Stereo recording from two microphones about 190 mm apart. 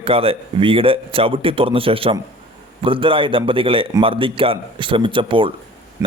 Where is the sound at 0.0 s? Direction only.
30° right (ahead or behind).